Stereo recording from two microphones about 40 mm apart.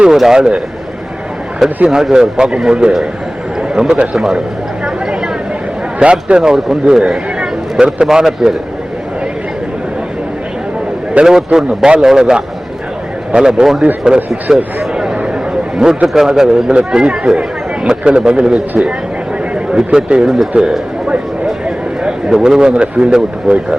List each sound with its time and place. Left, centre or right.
0.0 s speech: centre
1.9 s a man's voice: centre
6.0 s speech: right
7.1 s a sound: centre
8.0 s a man's voice: centre
11.2 s a man's voice: centre
19.7 s speech: right
22.0 s a sound: centre
22.7 s speech: right